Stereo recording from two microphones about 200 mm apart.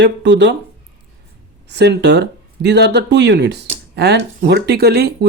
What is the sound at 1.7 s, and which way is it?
Speech, 60° right (ahead or behind).